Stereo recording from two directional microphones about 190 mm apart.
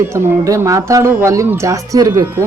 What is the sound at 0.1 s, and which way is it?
Speech, 15° right (ahead or behind).